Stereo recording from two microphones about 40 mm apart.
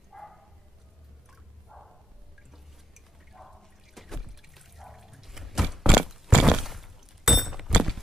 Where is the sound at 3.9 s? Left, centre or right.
Centre.